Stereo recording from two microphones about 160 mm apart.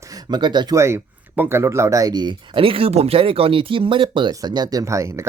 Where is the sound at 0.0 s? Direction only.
25° right (ahead or behind).